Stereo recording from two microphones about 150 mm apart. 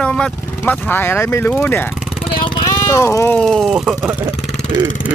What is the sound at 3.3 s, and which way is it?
Speech, centre (ahead or behind).